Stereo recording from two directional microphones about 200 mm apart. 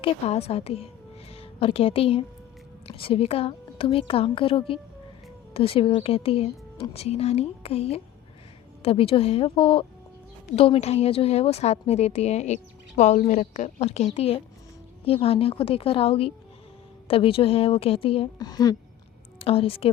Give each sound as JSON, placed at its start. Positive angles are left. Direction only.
{"t": 0.0, "sound": "a woman's voice", "side_deg": 30}